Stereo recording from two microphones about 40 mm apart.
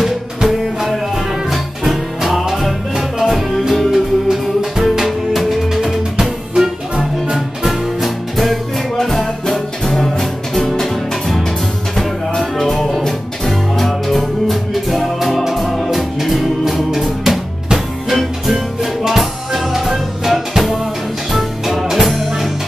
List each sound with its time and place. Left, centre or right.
0.0 s music: centre
12.5 s music: centre